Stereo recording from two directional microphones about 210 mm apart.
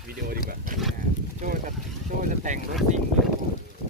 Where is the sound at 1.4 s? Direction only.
35° right (ahead or behind).